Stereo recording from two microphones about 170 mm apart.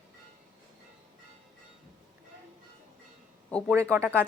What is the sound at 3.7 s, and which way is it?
Speech, 15° right (ahead or behind).